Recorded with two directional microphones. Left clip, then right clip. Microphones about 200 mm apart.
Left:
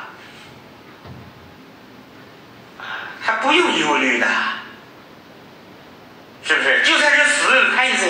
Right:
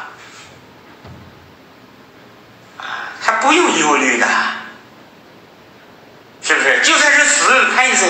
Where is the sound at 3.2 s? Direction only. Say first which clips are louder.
Right 4 dB; 40° right (ahead or behind).